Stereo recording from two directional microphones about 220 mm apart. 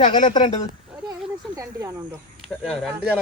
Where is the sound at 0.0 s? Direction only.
30° left (ahead or behind).